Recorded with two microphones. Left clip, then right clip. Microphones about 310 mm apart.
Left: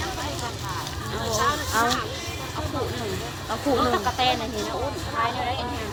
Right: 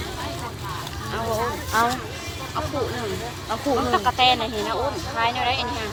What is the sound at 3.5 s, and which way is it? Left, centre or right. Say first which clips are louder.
Speech: right 1 dB; centre.